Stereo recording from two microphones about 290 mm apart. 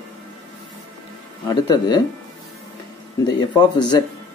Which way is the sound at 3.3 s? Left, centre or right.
Centre.